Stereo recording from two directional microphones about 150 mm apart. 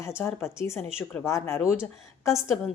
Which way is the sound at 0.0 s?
15° left (ahead or behind).